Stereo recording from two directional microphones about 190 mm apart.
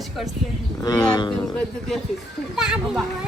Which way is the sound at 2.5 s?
5° right (ahead or behind).